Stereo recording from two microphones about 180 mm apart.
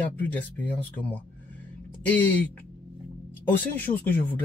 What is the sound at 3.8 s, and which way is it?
Speech, 10° left (ahead or behind).